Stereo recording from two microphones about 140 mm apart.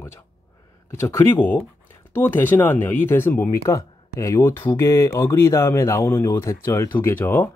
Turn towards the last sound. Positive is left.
turn(degrees=15)  # may be behind; listen again after turning